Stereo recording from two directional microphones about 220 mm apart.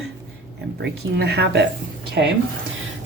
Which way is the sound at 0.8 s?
50° right (ahead or behind).